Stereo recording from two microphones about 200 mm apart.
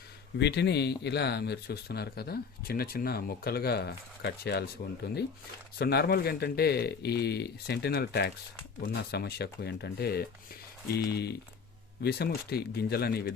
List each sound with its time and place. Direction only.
0.3 s speech: 55° left (ahead or behind)